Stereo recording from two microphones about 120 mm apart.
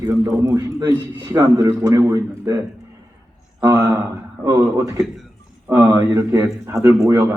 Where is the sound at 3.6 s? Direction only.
30° right (ahead or behind).